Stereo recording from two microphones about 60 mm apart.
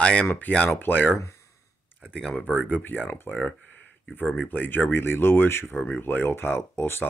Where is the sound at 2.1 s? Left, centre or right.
Left.